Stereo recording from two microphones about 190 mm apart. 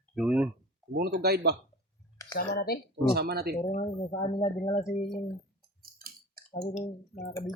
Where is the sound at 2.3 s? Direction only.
55° left (ahead or behind).